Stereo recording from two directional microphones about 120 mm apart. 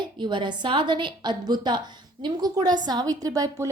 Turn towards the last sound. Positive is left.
turn(degrees=-30)  # may be behind; listen again after turning